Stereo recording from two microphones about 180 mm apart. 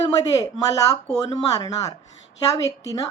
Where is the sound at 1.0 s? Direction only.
35° left (ahead or behind).